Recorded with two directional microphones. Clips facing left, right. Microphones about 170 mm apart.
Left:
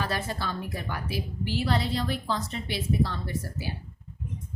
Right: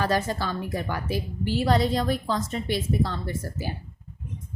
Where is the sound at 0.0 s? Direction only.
45° right (ahead or behind).